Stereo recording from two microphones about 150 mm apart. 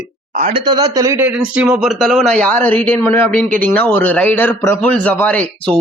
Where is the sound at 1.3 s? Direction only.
10° right (ahead or behind); by 5.7 s 10° left (ahead or behind).